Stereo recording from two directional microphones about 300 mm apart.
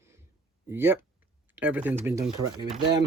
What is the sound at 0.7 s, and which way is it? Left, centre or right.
Speech, centre.